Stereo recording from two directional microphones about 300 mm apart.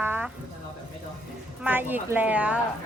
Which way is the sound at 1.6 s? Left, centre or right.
Centre.